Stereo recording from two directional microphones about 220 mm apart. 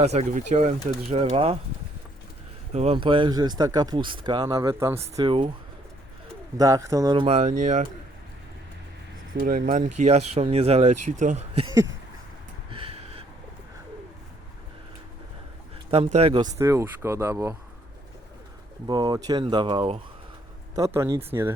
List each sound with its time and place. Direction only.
0.0 s speech: 30° right (ahead or behind)
2.7 s speech: 25° right (ahead or behind)
6.6 s speech: 15° right (ahead or behind); by 7.9 s 30° right (ahead or behind)
9.4 s speech: 35° right (ahead or behind)
12.7 s a sound: 25° right (ahead or behind)
16.1 s speech: 25° right (ahead or behind)
18.9 s speech: 20° right (ahead or behind)
20.7 s speech: 15° right (ahead or behind)